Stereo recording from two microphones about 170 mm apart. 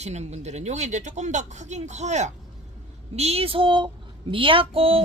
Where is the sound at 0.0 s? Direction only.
40° right (ahead or behind).